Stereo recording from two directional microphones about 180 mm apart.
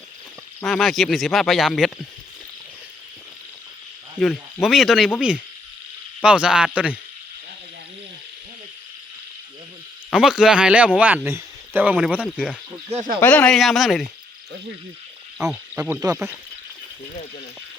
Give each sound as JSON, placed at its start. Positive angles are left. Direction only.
{"t": 0.6, "sound": "speech", "side_deg": 0}
{"t": 4.2, "sound": "speech", "side_deg": 5}
{"t": 10.1, "sound": "speech", "side_deg": -5}
{"t": 12.9, "sound": "speech", "side_deg": -40}
{"t": 13.1, "sound": "speech", "side_deg": 10}
{"t": 15.4, "sound": "speech", "side_deg": -5}